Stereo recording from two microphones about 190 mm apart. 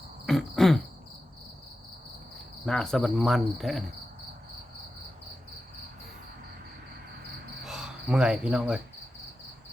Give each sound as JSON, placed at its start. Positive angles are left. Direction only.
{"t": 0.3, "sound": "throat clearing", "side_deg": 0}
{"t": 2.6, "sound": "cricket", "side_deg": 5}
{"t": 7.6, "sound": "speech", "side_deg": -5}